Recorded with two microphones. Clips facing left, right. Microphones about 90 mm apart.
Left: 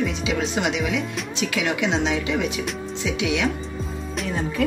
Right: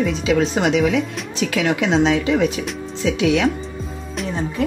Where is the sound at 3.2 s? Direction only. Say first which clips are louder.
Right 7 dB; 40° right (ahead or behind).